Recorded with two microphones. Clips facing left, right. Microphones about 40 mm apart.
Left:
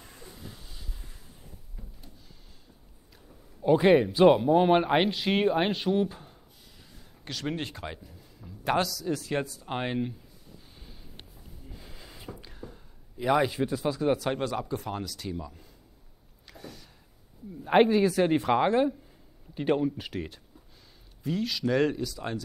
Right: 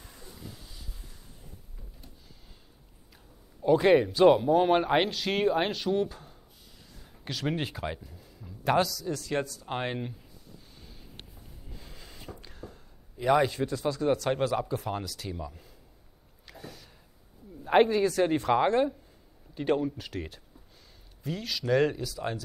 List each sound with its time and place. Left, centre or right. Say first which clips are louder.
3.6 s speech: left 1 dB; centre
7.0 s speech: right 2 dB; centre
9.0 s speech: left 1 dB; centre
9.7 s speech: left 2 dB; centre
11.7 s a sound: even; centre
13.2 s speech: right 1 dB; centre
14.3 s speech: right 2 dB; centre
16.4 s a sound: even; centre
17.6 s speech: left 1 dB; centre